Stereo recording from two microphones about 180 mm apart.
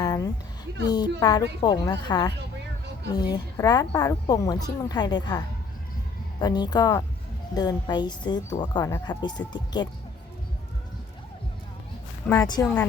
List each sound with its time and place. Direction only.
0.0 s a sound: 20° left (ahead or behind)
0.9 s a woman's voice: 25° left (ahead or behind)
6.4 s a woman's voice: 25° left (ahead or behind)
12.2 s speech: 10° left (ahead or behind)